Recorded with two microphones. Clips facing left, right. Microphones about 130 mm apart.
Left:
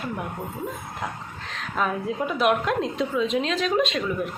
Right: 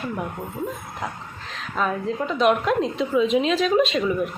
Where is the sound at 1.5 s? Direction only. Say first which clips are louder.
Right 1 dB; centre (ahead or behind).